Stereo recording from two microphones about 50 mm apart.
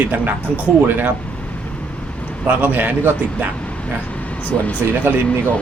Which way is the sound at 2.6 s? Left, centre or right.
Right.